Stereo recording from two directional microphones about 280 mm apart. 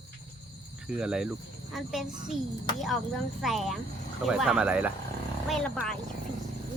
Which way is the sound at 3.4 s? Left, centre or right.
Centre.